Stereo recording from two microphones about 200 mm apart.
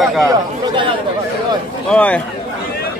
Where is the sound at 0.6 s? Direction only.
25° right (ahead or behind).